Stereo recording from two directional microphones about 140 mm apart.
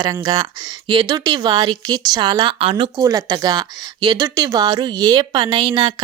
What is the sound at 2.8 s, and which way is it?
A woman's voice, 30° right (ahead or behind).